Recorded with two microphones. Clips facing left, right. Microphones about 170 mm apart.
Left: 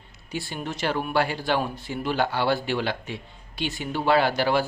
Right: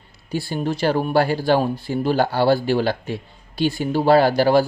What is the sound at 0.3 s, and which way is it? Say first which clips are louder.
Speech: right 8 dB; 35° right (ahead or behind).